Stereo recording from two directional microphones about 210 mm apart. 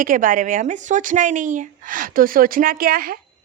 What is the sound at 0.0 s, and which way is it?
A woman's voice, 40° right (ahead or behind).